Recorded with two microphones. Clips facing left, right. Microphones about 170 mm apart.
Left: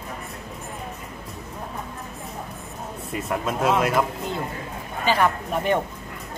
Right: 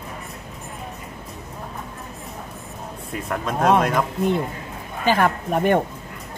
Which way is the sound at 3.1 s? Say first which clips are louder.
Even; 5° left (ahead or behind).